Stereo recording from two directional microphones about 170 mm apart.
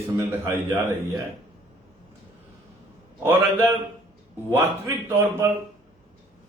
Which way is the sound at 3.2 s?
15° right (ahead or behind).